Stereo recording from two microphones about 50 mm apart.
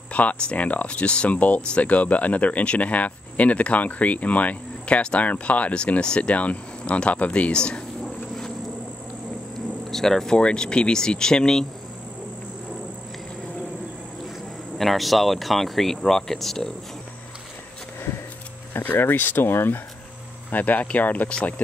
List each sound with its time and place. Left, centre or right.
0.1 s speech: left
9.8 s speech: centre
14.8 s speech: centre
18.7 s speech: left
20.5 s speech: left